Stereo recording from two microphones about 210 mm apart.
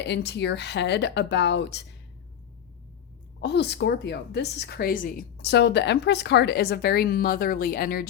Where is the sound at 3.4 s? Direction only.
55° left (ahead or behind).